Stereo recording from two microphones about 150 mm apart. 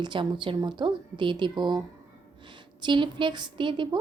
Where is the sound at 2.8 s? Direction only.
35° right (ahead or behind).